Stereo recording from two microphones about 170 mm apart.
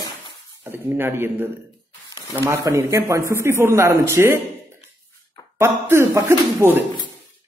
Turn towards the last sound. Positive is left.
turn(degrees=-15)  # may be behind; listen again after turning